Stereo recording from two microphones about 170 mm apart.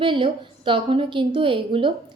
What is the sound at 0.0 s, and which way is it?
Speech, 30° right (ahead or behind).